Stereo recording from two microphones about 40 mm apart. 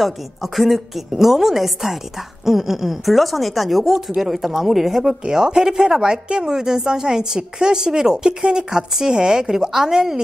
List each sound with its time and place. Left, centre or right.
0.0 s speech: centre
5.2 s a woman's voice: centre